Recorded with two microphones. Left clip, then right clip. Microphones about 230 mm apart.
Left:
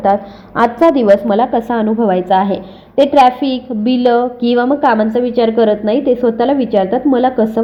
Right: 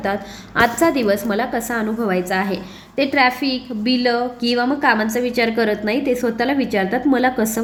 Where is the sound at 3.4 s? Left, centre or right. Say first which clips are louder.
Left 4 dB; left.